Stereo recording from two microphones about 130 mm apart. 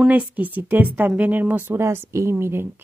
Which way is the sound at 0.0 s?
10° right (ahead or behind).